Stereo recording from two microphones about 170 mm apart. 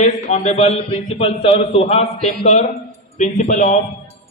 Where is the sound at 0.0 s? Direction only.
40° left (ahead or behind).